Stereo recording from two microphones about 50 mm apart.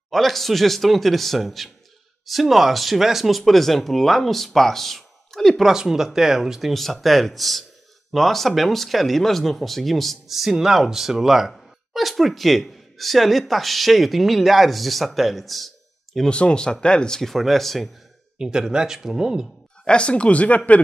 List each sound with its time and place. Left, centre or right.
0.1 s speech: centre
5.7 s speech: centre
6.7 s speech: centre
16.3 s speech: left; by 17.8 s centre
18.4 s speech: centre
19.8 s speech: centre